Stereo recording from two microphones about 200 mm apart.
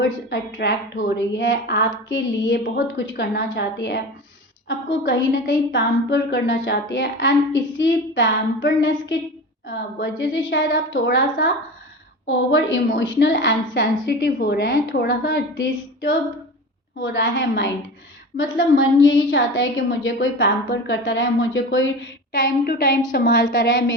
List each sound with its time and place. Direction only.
0.0 s a woman's voice: 60° left (ahead or behind)
22.4 s a woman's voice: 45° left (ahead or behind)
23.6 s a woman's voice: 60° left (ahead or behind)